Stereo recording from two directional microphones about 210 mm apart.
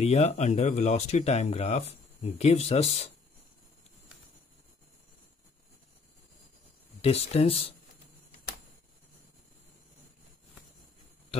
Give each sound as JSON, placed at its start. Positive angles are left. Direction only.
{"t": 0.0, "sound": "speech", "side_deg": 30}
{"t": 7.0, "sound": "speech", "side_deg": 30}